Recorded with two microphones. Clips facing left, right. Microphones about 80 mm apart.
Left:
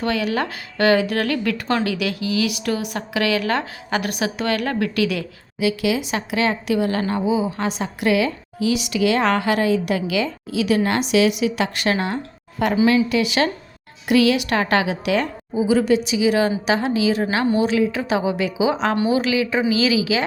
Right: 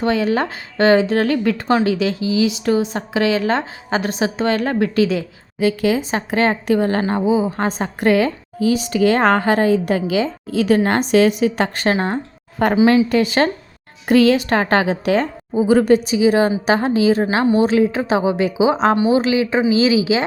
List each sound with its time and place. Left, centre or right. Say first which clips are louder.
0.0 s speech: right 4 dB; right
5.5 s a woman's voice: right 3 dB; right
10.5 s a woman's voice: right 4 dB; right
15.5 s a woman's voice: right 4 dB; right